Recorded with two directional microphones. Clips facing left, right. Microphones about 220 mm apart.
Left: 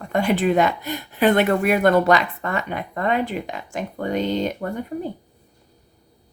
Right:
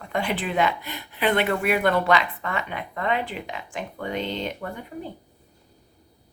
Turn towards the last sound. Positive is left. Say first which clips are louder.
# left 6 dB
turn(degrees=45)  # may be behind; listen again after turning